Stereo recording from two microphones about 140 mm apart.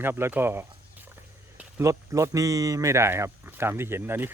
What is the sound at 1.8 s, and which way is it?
Speech, 20° right (ahead or behind).